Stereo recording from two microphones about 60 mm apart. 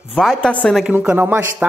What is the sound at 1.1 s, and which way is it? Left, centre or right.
Speech, right.